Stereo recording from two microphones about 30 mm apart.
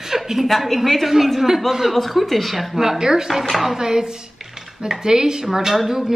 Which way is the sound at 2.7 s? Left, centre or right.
Centre.